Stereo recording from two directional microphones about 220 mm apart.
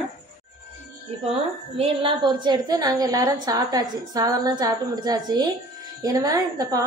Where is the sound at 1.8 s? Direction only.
20° right (ahead or behind).